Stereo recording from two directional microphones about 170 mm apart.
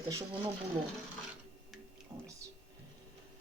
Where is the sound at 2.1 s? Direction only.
15° right (ahead or behind).